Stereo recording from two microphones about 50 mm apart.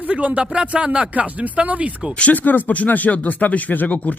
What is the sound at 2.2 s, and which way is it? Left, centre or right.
Speech, left.